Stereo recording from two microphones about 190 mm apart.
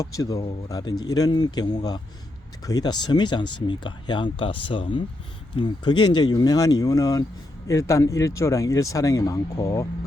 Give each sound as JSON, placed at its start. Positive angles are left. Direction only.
{"t": 0.0, "sound": "speech", "side_deg": 15}